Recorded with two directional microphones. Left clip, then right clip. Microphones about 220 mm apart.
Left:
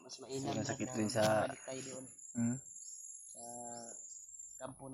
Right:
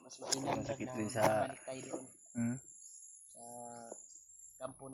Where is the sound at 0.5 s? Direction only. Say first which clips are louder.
Left 1 dB; 15° left (ahead or behind).